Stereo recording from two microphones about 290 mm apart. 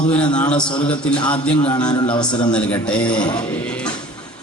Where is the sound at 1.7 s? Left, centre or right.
Centre.